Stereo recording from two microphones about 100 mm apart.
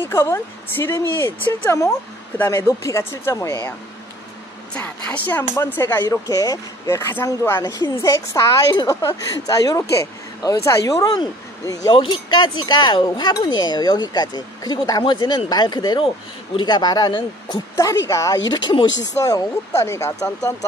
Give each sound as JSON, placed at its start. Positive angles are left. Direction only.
{"t": 0.0, "sound": "speech", "side_deg": 25}
{"t": 4.7, "sound": "speech", "side_deg": 15}
{"t": 6.2, "sound": "speech", "side_deg": 35}
{"t": 11.9, "sound": "speech", "side_deg": 55}
{"t": 17.7, "sound": "speech", "side_deg": 30}
{"t": 18.5, "sound": "speech", "side_deg": 45}
{"t": 19.1, "sound": "speech", "side_deg": 35}